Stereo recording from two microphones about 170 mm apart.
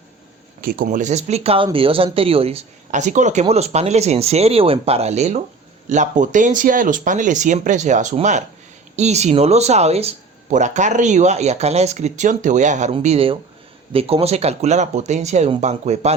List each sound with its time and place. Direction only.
0.6 s speech: 55° right (ahead or behind); by 16.1 s 40° right (ahead or behind)